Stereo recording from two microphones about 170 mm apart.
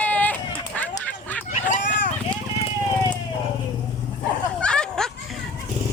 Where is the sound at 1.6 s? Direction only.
50° left (ahead or behind).